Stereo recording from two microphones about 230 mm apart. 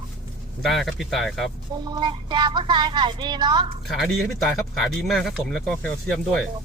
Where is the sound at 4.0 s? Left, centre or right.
Centre.